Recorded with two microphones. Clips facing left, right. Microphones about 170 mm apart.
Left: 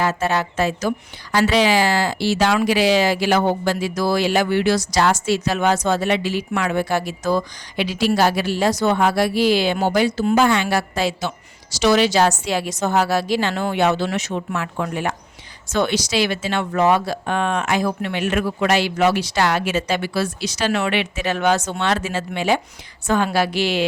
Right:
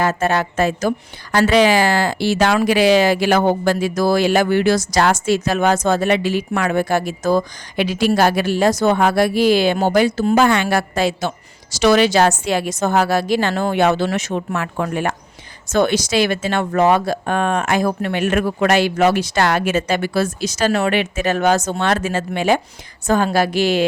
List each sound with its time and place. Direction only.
0.0 s speech: 50° right (ahead or behind)